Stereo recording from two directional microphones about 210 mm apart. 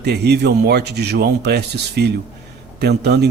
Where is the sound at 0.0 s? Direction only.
50° right (ahead or behind).